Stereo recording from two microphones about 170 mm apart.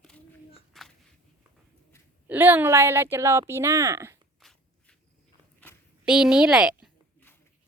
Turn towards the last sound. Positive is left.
turn(degrees=-5)  # may be behind; listen again after turning